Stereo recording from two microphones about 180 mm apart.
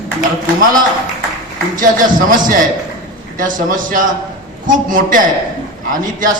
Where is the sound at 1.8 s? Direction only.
50° right (ahead or behind).